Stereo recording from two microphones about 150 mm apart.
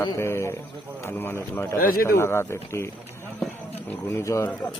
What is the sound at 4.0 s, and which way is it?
Speech, 15° left (ahead or behind).